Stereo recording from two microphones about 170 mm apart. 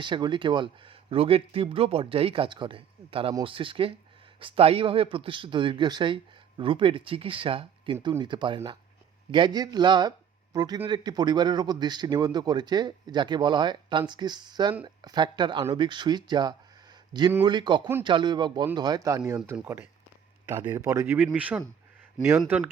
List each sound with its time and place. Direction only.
0.0 s speech: 30° right (ahead or behind); by 22.7 s 10° right (ahead or behind)